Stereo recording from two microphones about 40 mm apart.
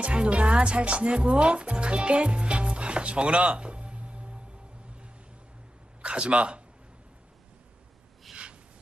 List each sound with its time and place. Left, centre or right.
0.0 s speech: right
6.0 s speech: right
8.3 s a sound: centre